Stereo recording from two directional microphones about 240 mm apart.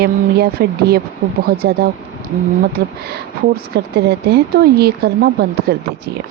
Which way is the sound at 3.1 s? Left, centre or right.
Right.